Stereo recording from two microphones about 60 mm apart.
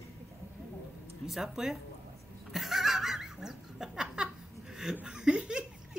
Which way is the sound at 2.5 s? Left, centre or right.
Centre.